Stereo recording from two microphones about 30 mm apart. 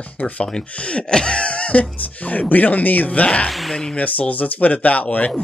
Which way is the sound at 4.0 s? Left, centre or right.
Left.